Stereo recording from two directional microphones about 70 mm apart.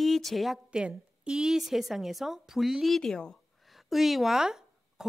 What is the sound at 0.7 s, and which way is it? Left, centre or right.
Speech, centre.